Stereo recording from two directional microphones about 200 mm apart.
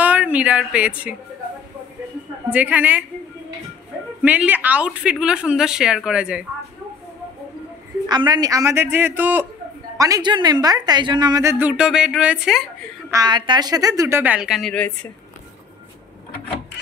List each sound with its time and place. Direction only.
0.0 s speech: 5° right (ahead or behind)
2.5 s a woman's voice: 10° right (ahead or behind)
4.2 s a woman's voice: 10° right (ahead or behind)
8.1 s a woman's voice: 20° right (ahead or behind); by 12.6 s 5° right (ahead or behind)
13.1 s a woman's voice: 20° right (ahead or behind); by 14.9 s 5° left (ahead or behind)